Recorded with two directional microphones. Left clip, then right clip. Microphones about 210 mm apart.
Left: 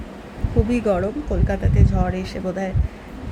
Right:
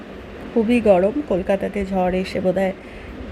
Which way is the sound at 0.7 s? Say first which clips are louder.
Right 7 dB; 15° right (ahead or behind).